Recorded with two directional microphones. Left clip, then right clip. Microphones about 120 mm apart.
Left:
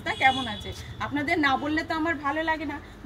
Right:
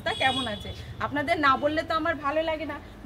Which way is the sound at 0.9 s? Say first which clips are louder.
Even; 30° right (ahead or behind).